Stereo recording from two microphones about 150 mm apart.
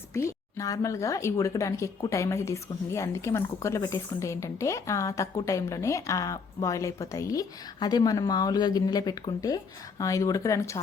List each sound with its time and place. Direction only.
0.1 s speech: 20° left (ahead or behind)